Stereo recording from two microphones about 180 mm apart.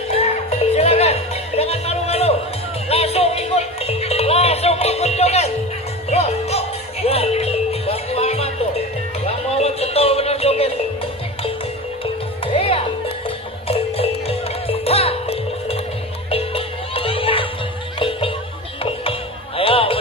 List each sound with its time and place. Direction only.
0.1 s music: 35° left (ahead or behind)
12.5 s music: 30° left (ahead or behind)
19.5 s music: 30° left (ahead or behind)